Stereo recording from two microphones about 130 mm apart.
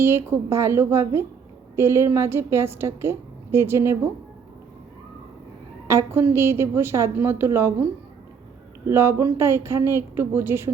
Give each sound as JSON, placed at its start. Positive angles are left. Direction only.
{"t": 0.0, "sound": "a woman's voice", "side_deg": -20}
{"t": 5.9, "sound": "a woman's voice", "side_deg": -20}
{"t": 8.9, "sound": "a woman's voice", "side_deg": -20}